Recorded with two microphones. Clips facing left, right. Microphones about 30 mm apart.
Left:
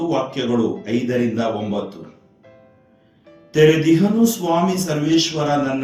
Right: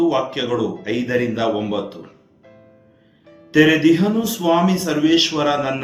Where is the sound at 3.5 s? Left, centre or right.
Right.